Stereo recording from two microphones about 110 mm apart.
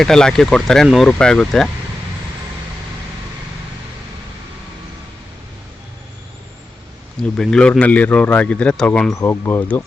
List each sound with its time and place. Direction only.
0.0 s speech: 5° left (ahead or behind)
7.2 s a man's voice: 5° left (ahead or behind)
9.1 s speech: 20° left (ahead or behind)